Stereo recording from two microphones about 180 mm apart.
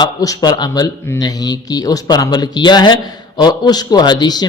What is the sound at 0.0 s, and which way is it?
Speech, 20° left (ahead or behind).